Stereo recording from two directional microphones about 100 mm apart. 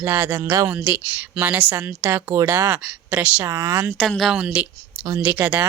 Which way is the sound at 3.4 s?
35° right (ahead or behind).